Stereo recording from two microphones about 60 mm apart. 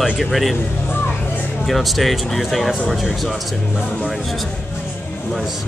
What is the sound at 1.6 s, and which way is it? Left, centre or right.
Speech, centre.